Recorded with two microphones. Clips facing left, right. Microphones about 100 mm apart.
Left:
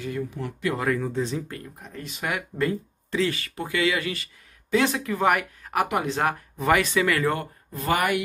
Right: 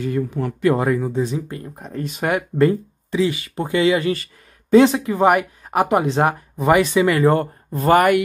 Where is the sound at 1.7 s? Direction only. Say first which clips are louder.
Right 10 dB; 40° right (ahead or behind).